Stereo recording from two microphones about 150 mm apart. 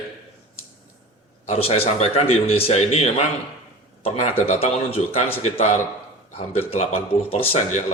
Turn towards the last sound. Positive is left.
turn(degrees=50)  # may be behind; listen again after turning